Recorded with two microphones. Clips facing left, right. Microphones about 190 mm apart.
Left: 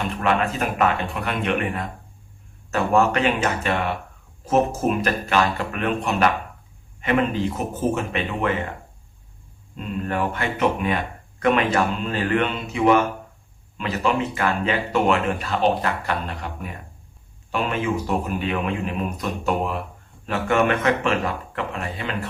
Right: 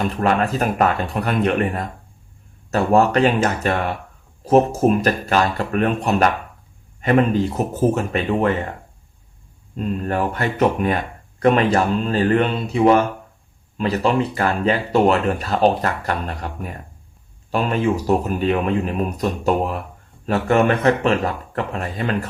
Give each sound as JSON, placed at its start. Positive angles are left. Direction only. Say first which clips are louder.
{"t": 0.0, "sound": "speech", "louder": "right 3 dB", "side_deg": -40}
{"t": 9.7, "sound": "speech", "louder": "right 4 dB", "side_deg": -40}